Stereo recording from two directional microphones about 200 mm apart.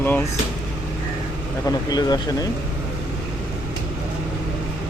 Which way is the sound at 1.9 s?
20° left (ahead or behind).